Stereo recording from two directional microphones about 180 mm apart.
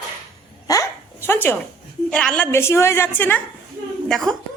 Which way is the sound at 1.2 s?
10° left (ahead or behind).